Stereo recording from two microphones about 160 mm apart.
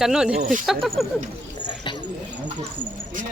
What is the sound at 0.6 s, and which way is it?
Speech, centre (ahead or behind).